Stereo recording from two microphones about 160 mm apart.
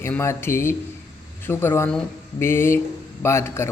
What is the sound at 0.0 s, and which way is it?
A man's voice, 15° left (ahead or behind).